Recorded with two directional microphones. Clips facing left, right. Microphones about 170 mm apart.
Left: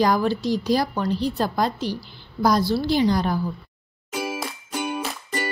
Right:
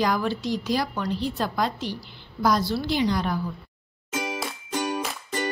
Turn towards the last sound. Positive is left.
turn(degrees=5)  # may be behind; listen again after turning